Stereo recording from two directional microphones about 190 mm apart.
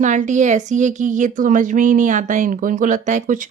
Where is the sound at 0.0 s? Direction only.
40° right (ahead or behind).